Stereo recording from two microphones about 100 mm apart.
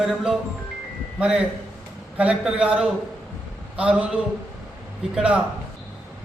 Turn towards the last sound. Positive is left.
turn(degrees=-10)  # may be behind; listen again after turning